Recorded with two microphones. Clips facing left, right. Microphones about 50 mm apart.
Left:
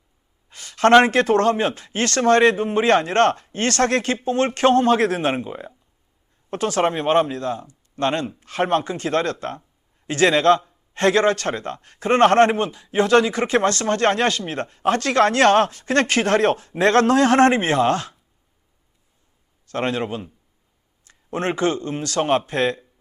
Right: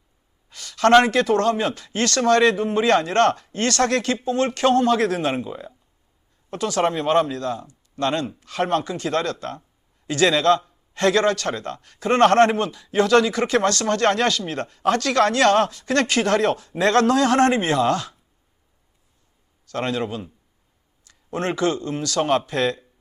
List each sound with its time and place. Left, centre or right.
0.5 s a sound: left
1.0 s a man's voice: left
19.6 s a man's voice: left